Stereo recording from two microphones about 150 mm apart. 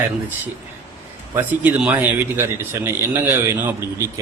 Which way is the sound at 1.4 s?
10° right (ahead or behind).